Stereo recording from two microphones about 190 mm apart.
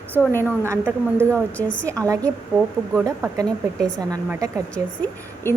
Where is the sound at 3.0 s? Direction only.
20° right (ahead or behind).